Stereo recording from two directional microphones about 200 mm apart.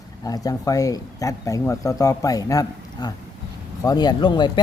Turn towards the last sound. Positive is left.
turn(degrees=25)  # may be behind; listen again after turning